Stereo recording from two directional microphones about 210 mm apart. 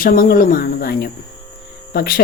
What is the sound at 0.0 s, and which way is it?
A woman's voice, 45° left (ahead or behind).